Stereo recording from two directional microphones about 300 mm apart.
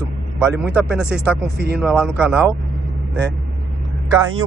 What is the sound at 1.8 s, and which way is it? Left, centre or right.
Speech, centre.